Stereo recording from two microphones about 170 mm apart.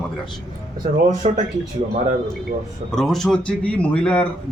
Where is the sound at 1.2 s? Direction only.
40° right (ahead or behind).